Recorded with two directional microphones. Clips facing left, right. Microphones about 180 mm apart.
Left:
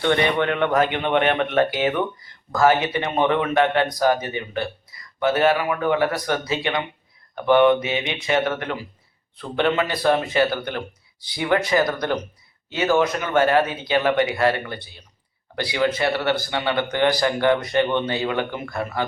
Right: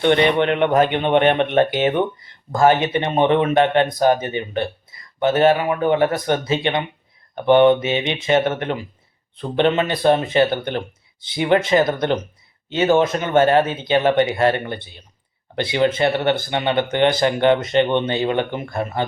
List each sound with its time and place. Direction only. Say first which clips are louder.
0.0 s speech: right 4 dB; 20° right (ahead or behind)